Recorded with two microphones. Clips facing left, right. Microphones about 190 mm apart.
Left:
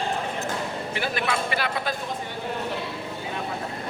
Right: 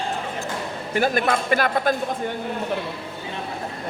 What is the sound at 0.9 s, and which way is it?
A man's voice, 45° right (ahead or behind).